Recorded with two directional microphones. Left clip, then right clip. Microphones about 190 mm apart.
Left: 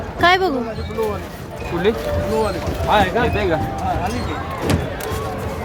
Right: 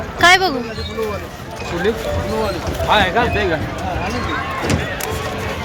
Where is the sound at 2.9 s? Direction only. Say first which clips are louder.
Right 2 dB; 15° left (ahead or behind).